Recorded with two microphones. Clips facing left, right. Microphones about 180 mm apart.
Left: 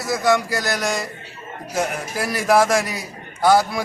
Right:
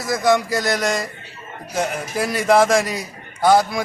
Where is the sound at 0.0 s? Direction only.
5° left (ahead or behind).